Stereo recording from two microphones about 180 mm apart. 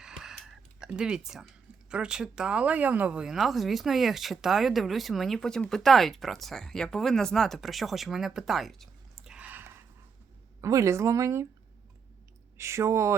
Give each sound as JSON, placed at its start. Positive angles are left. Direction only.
{"t": 0.0, "sound": "a sound", "side_deg": -5}
{"t": 1.9, "sound": "a woman's voice", "side_deg": -5}
{"t": 12.5, "sound": "a woman's voice", "side_deg": -15}